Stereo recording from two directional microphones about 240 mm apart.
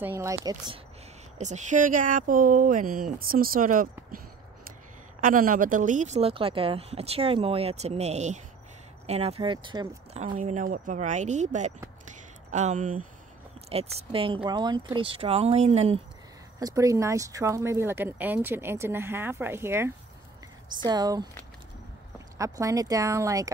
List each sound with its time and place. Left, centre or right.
0.0 s speech: centre
1.4 s speech: right
5.2 s speech: right
10.2 s speech: right
12.1 s a sound: right
13.7 s speech: right
16.5 s speech: centre
22.4 s speech: centre